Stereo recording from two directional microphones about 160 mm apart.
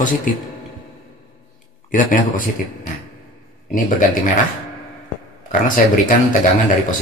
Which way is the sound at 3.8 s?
55° left (ahead or behind).